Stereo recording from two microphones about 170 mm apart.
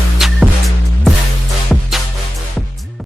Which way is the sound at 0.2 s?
Centre (ahead or behind).